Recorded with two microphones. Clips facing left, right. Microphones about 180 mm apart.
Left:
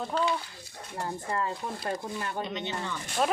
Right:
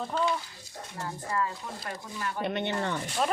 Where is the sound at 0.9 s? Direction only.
30° left (ahead or behind).